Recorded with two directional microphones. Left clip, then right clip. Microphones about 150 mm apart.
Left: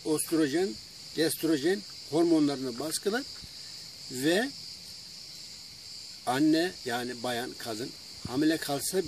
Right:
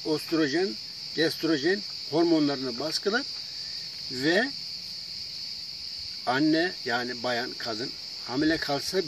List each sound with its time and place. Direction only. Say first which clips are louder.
0.0 s speech: right 2 dB; 20° left (ahead or behind)
6.2 s speech: right 2 dB; 20° left (ahead or behind)